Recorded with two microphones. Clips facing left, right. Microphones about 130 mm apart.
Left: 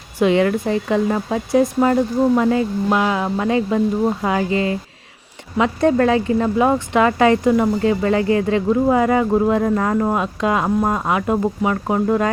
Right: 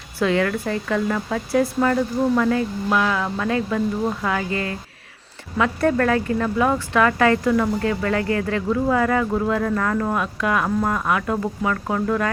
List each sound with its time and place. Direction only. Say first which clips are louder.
0.2 s speech: left 5 dB; 20° left (ahead or behind)